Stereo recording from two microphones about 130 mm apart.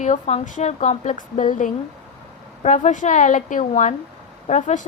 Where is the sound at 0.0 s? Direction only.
60° left (ahead or behind).